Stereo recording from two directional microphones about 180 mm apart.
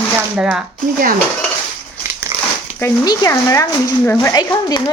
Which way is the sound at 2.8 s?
20° left (ahead or behind).